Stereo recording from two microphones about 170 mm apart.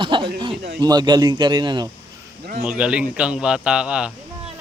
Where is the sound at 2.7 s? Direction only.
5° right (ahead or behind).